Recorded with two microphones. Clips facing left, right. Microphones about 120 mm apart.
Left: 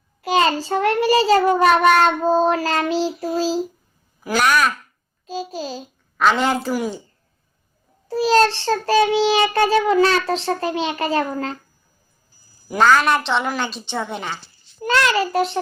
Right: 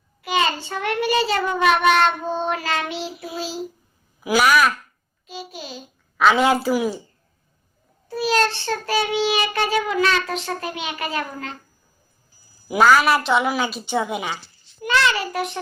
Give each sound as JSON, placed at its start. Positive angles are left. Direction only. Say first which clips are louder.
{"t": 0.2, "sound": "child singing", "louder": "left 4 dB", "side_deg": 35}
{"t": 4.2, "sound": "speech", "louder": "right 1 dB", "side_deg": -5}
{"t": 5.2, "sound": "child singing", "louder": "left 8 dB", "side_deg": 40}
{"t": 6.1, "sound": "speech", "louder": "right 1 dB", "side_deg": -5}
{"t": 8.0, "sound": "child singing", "louder": "left 5 dB", "side_deg": 35}
{"t": 12.6, "sound": "a woman's voice", "louder": "even", "side_deg": -5}
{"t": 14.8, "sound": "a child's voice", "louder": "left 2 dB", "side_deg": 35}